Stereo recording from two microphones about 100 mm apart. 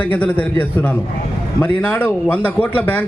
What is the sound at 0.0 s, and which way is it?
A man's voice, 15° left (ahead or behind).